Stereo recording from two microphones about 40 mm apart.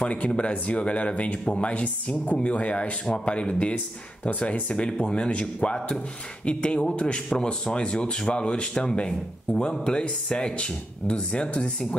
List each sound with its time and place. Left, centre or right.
0.0 s speech: left
4.7 s speech: left